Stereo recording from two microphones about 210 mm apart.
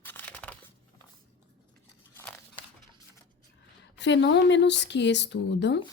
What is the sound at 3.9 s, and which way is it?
Speech, 55° left (ahead or behind).